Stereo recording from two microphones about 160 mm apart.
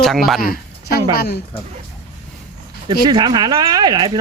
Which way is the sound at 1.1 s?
75° left (ahead or behind).